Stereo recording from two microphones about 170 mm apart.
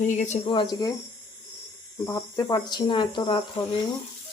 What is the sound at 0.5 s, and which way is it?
Speech, 25° left (ahead or behind).